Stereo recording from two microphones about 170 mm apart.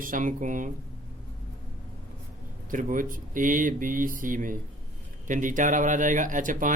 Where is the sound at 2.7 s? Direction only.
50° right (ahead or behind).